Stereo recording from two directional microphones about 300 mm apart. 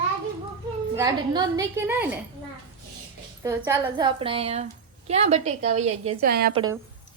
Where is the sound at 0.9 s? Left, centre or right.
Centre.